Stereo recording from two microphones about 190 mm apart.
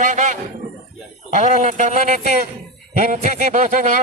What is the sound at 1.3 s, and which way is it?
A man's voice, 40° right (ahead or behind).